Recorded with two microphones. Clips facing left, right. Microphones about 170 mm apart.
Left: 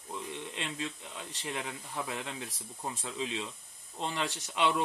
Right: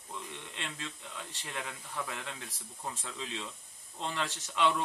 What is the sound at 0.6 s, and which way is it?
A man's voice, 20° left (ahead or behind).